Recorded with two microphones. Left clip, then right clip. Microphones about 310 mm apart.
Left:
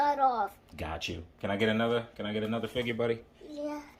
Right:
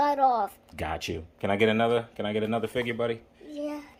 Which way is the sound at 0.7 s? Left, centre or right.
Centre.